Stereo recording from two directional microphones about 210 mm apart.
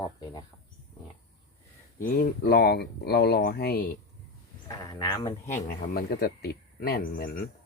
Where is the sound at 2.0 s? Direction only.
45° left (ahead or behind).